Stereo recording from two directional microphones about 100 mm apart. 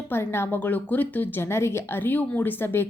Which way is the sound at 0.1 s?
25° left (ahead or behind).